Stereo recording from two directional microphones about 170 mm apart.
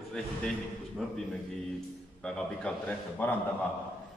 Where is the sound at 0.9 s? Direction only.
Centre (ahead or behind).